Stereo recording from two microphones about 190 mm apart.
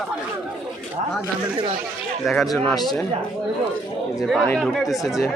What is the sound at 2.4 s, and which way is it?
Speech, 20° left (ahead or behind).